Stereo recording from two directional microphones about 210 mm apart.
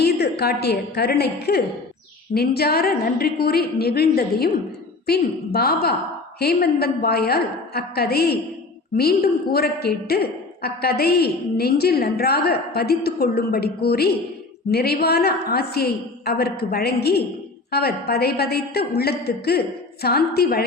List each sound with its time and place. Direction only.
0.0 s a woman's voice: 50° left (ahead or behind)